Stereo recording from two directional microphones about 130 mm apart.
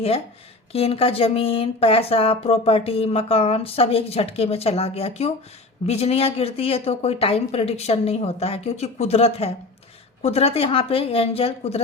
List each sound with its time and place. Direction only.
0.7 s speech: 50° left (ahead or behind)